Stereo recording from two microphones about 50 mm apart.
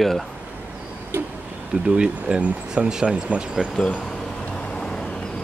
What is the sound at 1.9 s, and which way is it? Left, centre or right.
Speech, centre.